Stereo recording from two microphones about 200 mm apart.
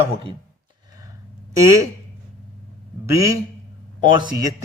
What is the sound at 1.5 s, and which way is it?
Speech, 15° right (ahead or behind).